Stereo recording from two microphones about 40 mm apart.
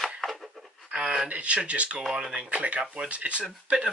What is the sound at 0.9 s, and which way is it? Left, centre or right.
Speech, right.